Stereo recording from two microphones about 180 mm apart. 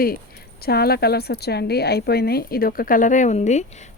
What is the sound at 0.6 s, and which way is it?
A woman's voice, 60° left (ahead or behind).